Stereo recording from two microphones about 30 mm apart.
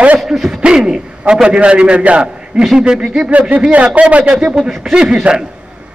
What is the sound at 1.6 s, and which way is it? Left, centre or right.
Speech, right.